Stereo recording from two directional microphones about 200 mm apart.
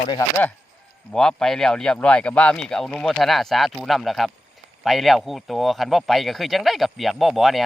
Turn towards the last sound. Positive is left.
turn(degrees=0)  # may be behind; listen again after turning